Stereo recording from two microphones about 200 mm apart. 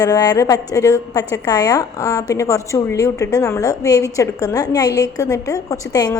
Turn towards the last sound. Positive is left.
turn(degrees=20)  # may be behind; listen again after turning